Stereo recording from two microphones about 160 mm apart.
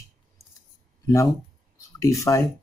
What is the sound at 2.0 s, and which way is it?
Speech, 20° left (ahead or behind).